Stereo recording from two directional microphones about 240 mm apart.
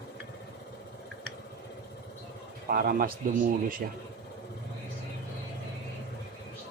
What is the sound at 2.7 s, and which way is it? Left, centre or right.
Speech, right.